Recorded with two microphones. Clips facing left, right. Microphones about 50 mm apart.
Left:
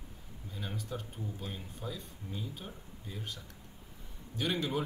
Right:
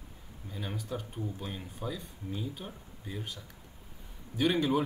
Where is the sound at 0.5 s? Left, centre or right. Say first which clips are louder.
Right 3 dB; centre.